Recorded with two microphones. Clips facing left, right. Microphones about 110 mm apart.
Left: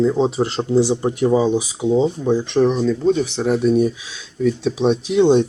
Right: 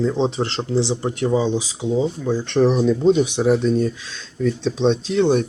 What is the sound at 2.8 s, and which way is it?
Speech, 15° right (ahead or behind).